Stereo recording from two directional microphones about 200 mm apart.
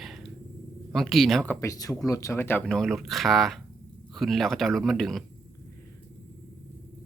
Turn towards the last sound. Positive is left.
turn(degrees=0)  # may be behind; listen again after turning